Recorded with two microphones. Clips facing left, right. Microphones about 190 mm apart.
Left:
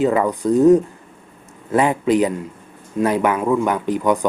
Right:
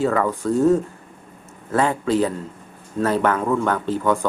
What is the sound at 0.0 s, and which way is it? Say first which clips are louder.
Speech: left 3 dB; 15° left (ahead or behind).